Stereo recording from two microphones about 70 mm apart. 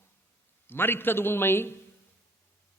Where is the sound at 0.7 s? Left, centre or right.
Left.